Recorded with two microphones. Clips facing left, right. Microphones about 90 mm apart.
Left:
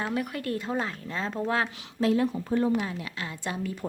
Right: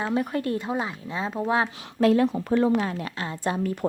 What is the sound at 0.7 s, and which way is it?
Speech, 15° right (ahead or behind).